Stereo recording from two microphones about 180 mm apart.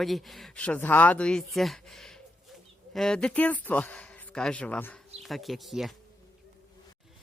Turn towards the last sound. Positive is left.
turn(degrees=0)  # may be behind; listen again after turning